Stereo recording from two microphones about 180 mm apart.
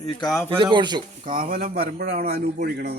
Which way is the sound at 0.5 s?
25° right (ahead or behind).